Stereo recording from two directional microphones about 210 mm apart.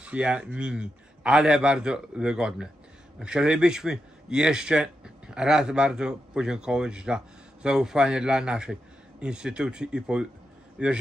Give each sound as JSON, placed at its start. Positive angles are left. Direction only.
{"t": 0.0, "sound": "speech", "side_deg": -5}